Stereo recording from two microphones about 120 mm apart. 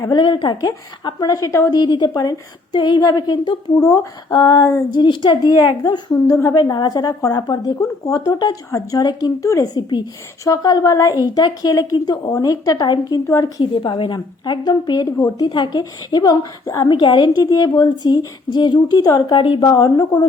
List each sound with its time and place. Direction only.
0.1 s a woman's voice: 40° left (ahead or behind); by 1.7 s 25° left (ahead or behind)
1.7 s a woman's voice: 40° left (ahead or behind)
3.8 s a woman's voice: 25° left (ahead or behind)
4.3 s a woman's voice: 40° left (ahead or behind)
6.2 s a woman's voice: 20° left (ahead or behind)
16.9 s a woman's voice: 40° left (ahead or behind)